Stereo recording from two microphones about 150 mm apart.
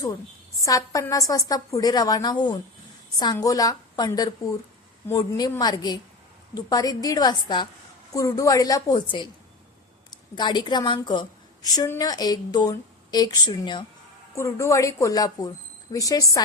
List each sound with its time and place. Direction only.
0.6 s a woman's voice: 20° left (ahead or behind)
14.3 s speech: 20° left (ahead or behind)